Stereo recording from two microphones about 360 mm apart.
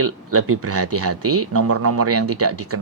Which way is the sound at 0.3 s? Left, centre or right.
Right.